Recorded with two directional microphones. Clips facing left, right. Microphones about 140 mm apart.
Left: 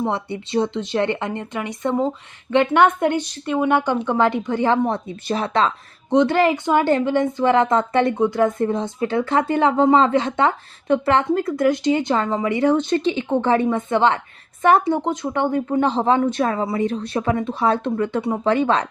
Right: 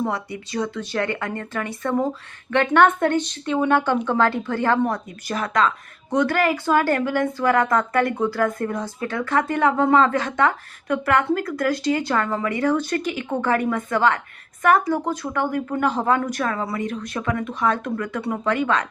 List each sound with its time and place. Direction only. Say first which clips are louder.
0.0 s speech: left 2 dB; 25° left (ahead or behind)